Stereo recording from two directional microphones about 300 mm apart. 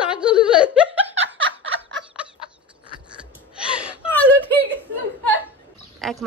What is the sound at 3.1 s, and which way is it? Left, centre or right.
Gasp, centre.